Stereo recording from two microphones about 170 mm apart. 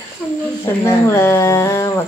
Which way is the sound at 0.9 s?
15° left (ahead or behind).